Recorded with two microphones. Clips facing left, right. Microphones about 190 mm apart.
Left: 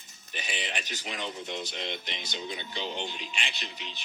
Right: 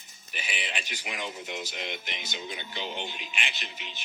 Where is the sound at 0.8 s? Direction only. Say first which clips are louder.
Even; 10° right (ahead or behind).